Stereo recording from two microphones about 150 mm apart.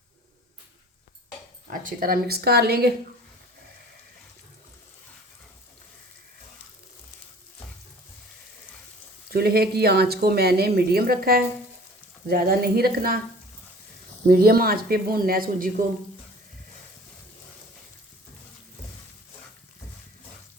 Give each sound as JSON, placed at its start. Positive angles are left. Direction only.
{"t": 1.8, "sound": "speech", "side_deg": -70}
{"t": 9.3, "sound": "speech", "side_deg": -90}
{"t": 14.3, "sound": "speech", "side_deg": -90}